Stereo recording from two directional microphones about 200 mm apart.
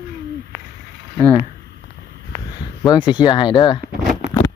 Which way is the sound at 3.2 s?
20° left (ahead or behind).